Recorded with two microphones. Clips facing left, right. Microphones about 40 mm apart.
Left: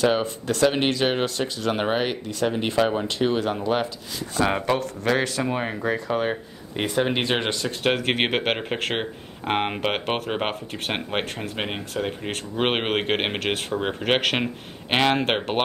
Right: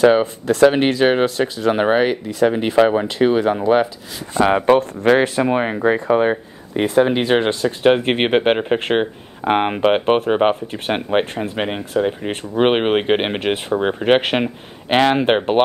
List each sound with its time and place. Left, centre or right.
0.0 s speech: centre
2.7 s speech: right
6.8 s speech: centre
7.8 s speech: centre
13.4 s speech: centre